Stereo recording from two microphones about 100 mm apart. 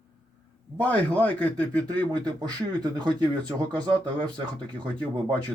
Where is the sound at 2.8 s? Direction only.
45° right (ahead or behind).